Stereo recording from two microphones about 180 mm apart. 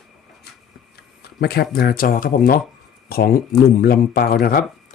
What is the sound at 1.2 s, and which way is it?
Speech, 60° left (ahead or behind).